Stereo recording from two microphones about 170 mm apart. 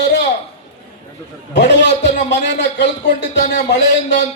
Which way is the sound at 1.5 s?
90° left.